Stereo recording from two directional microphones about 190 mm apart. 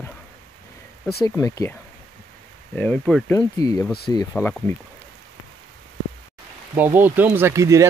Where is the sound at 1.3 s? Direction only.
15° left (ahead or behind).